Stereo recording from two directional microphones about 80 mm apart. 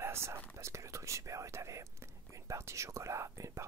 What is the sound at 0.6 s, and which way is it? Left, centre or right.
Speech, right.